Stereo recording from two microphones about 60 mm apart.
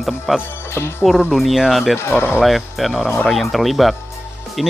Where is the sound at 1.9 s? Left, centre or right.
Left.